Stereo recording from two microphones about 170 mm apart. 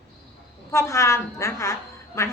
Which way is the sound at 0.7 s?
15° left (ahead or behind).